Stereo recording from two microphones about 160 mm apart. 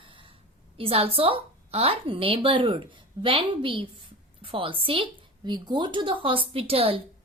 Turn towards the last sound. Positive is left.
turn(degrees=-35)  # may be behind; listen again after turning